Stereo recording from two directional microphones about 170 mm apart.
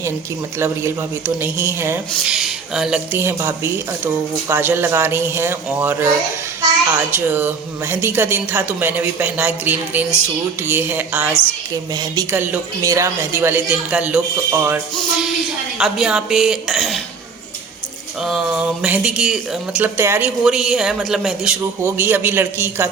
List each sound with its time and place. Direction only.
0.6 s speech: 15° right (ahead or behind)
2.3 s speech: centre (ahead or behind)
11.9 s speech: 20° right (ahead or behind)
15.8 s speech: centre (ahead or behind)
18.2 s speech: 5° right (ahead or behind)
21.6 s speech: 15° right (ahead or behind)